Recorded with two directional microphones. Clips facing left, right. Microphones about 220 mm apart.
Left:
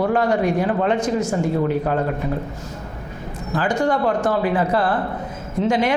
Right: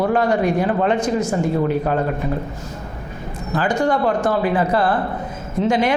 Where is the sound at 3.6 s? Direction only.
20° right (ahead or behind).